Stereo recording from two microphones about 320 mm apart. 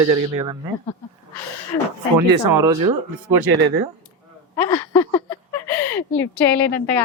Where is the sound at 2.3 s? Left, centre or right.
Right.